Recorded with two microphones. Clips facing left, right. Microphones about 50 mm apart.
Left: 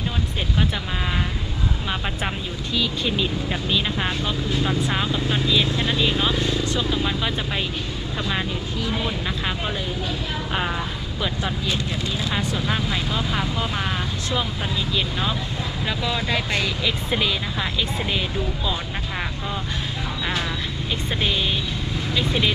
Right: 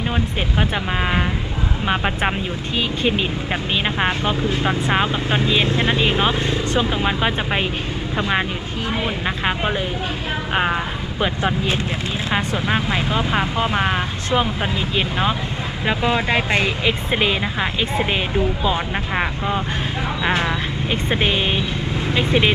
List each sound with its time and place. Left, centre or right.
1.9 s speech: right